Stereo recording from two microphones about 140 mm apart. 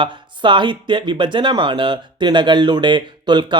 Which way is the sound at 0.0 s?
35° right (ahead or behind).